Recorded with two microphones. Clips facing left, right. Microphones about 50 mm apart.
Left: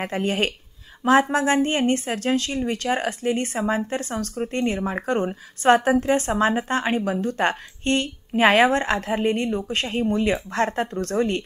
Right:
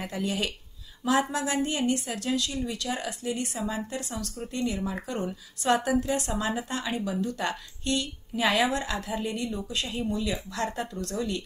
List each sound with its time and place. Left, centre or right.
0.0 s a woman's voice: left